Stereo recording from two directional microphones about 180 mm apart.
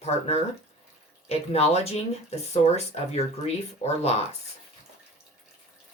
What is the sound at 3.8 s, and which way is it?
Speech, 35° left (ahead or behind).